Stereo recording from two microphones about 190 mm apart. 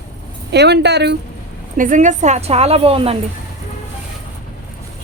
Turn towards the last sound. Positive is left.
turn(degrees=-30)  # may be behind; listen again after turning